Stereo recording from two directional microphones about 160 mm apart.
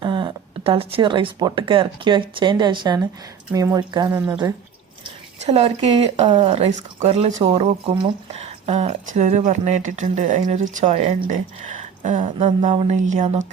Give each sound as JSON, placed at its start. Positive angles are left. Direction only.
{"t": 0.0, "sound": "speech", "side_deg": -30}
{"t": 5.4, "sound": "speech", "side_deg": -40}
{"t": 7.3, "sound": "speech", "side_deg": -30}
{"t": 8.3, "sound": "speech", "side_deg": -40}